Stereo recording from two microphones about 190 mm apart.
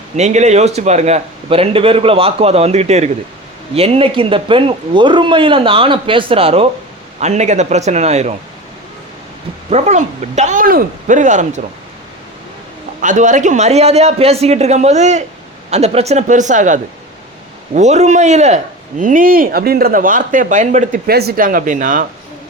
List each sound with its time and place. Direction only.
0.2 s a man's voice: 35° right (ahead or behind)
9.6 s a man's voice: 35° right (ahead or behind)
13.0 s a man's voice: 40° right (ahead or behind)